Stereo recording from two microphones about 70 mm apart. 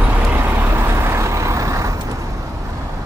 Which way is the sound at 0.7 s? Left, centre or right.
Right.